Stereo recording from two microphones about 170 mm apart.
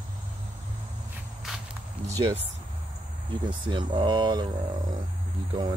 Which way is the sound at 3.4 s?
30° right (ahead or behind).